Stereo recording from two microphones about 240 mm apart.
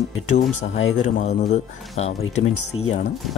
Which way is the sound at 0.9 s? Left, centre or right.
Left.